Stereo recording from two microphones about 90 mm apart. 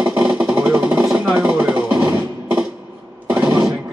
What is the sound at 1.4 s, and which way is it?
Music, 10° right (ahead or behind).